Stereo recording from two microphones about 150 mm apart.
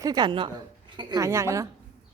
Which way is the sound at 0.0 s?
25° right (ahead or behind).